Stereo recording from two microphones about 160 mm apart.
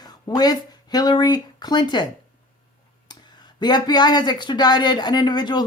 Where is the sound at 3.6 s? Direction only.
25° left (ahead or behind).